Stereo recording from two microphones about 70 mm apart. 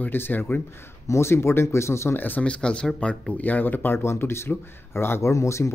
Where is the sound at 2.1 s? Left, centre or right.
Left.